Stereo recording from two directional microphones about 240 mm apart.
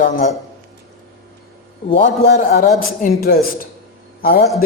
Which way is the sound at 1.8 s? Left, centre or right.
Left.